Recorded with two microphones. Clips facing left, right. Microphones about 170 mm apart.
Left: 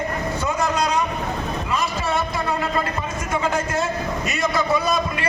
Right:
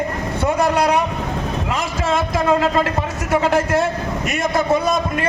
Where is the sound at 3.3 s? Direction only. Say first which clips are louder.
Right 7 dB; 65° right (ahead or behind).